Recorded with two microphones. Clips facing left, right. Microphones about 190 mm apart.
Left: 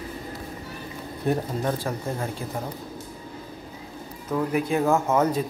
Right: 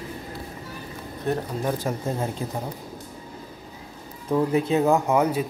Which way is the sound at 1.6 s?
15° right (ahead or behind).